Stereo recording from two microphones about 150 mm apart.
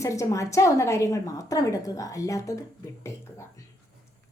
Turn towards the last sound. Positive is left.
turn(degrees=20)  # may be behind; listen again after turning